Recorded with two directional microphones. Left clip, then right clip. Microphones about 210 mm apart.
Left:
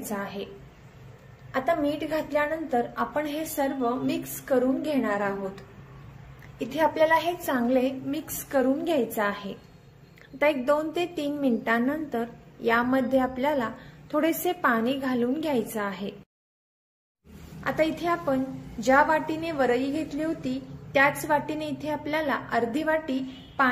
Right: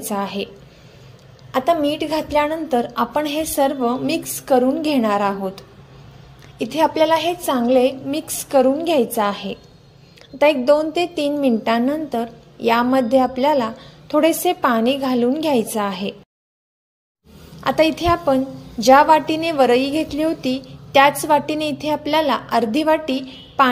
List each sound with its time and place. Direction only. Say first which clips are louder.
0.1 s a woman's voice: right 10 dB; 30° right (ahead or behind)
1.5 s a woman's voice: right 8 dB; 30° right (ahead or behind)
17.6 s a woman's voice: right 9 dB; 35° right (ahead or behind)